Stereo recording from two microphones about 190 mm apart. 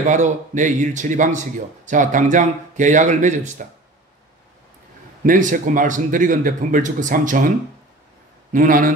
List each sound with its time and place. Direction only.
0.0 s speech: 40° right (ahead or behind)
5.2 s speech: 45° right (ahead or behind)
8.5 s speech: 45° right (ahead or behind)